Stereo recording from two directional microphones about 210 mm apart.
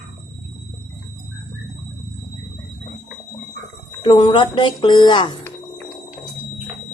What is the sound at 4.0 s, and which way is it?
Speech, 20° left (ahead or behind).